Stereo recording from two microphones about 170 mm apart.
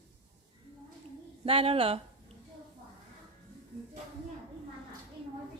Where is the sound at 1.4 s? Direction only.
35° right (ahead or behind).